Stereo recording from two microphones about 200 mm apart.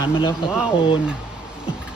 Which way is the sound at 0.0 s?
25° left (ahead or behind).